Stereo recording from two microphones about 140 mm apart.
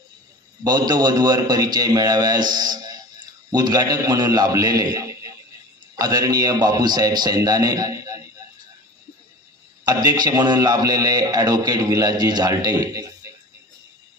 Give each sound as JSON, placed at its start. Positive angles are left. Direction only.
{"t": 0.7, "sound": "a man's voice", "side_deg": -30}
{"t": 9.8, "sound": "a man's voice", "side_deg": -30}